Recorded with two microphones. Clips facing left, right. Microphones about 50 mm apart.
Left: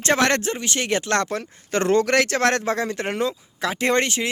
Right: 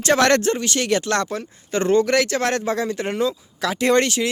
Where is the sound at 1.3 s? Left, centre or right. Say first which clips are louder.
Even; left.